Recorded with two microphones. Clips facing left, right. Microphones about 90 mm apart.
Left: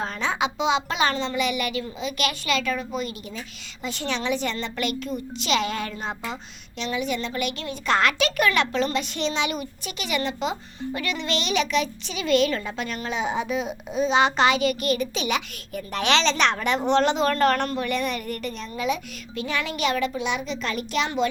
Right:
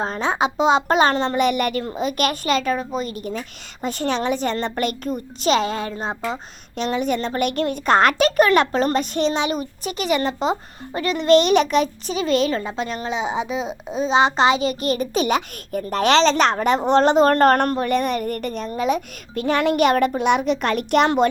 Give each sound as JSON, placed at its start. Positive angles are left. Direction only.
{"t": 0.0, "sound": "a child's voice", "side_deg": -35}
{"t": 6.7, "sound": "speech", "side_deg": -45}
{"t": 7.9, "sound": "a child's voice", "side_deg": -40}